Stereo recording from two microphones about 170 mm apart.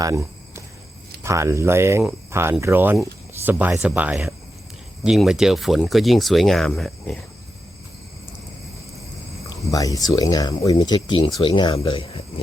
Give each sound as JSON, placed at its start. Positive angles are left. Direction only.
{"t": 0.0, "sound": "cricket", "side_deg": -20}
{"t": 1.2, "sound": "speech", "side_deg": -15}
{"t": 9.7, "sound": "speech", "side_deg": 20}